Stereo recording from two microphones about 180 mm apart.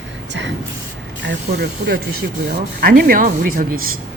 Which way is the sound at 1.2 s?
75° right (ahead or behind).